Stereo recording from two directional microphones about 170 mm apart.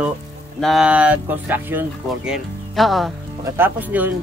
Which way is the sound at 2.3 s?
Centre (ahead or behind).